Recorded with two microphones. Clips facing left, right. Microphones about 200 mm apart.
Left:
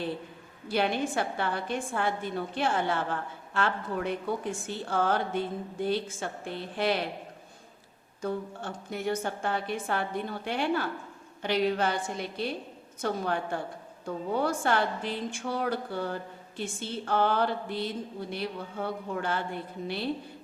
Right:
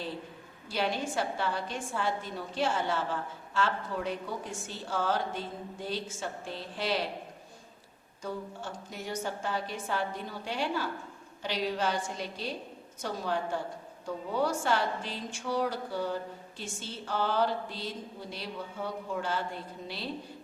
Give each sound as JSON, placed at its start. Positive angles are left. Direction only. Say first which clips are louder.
{"t": 0.7, "sound": "a woman's voice", "louder": "left 4 dB", "side_deg": 55}
{"t": 8.2, "sound": "a woman's voice", "louder": "left 5 dB", "side_deg": 55}